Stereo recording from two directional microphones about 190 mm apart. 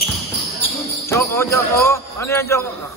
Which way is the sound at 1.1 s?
15° left (ahead or behind).